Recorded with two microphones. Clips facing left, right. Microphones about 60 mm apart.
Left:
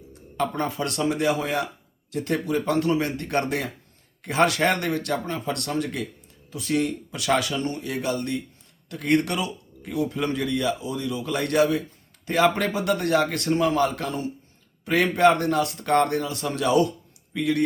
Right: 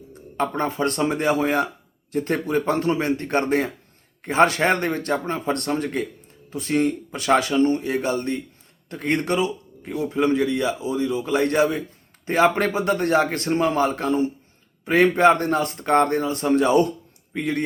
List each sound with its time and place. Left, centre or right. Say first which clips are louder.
0.1 s a man's voice: right 2 dB; right